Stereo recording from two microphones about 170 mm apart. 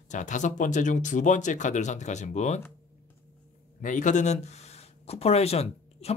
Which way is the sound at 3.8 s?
45° left (ahead or behind).